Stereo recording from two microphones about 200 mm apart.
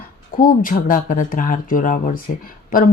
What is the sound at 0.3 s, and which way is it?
Speech, 40° left (ahead or behind).